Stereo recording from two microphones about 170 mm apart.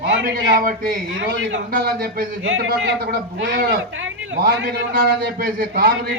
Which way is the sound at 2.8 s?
65° right (ahead or behind).